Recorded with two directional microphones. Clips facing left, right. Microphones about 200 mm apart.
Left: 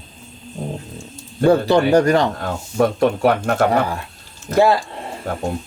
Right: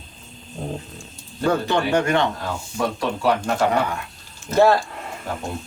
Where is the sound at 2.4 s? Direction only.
55° left (ahead or behind).